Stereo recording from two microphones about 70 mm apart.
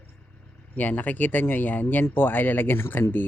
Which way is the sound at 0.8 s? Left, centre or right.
Left.